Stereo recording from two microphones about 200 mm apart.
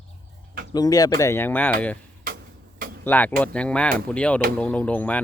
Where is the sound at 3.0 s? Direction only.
10° left (ahead or behind).